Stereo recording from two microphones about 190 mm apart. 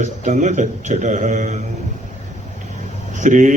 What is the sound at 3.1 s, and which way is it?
Speech, 40° right (ahead or behind).